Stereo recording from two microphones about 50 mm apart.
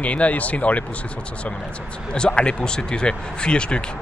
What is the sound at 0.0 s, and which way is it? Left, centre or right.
Speech, left.